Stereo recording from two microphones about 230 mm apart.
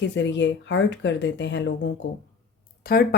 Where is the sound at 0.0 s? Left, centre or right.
Left.